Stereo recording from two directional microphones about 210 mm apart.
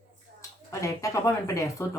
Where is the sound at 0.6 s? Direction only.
15° left (ahead or behind).